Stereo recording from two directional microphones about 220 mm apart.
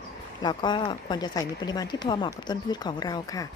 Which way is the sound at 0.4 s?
20° left (ahead or behind).